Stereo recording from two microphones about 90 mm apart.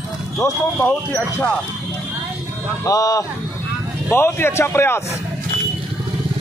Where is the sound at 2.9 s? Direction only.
40° left (ahead or behind).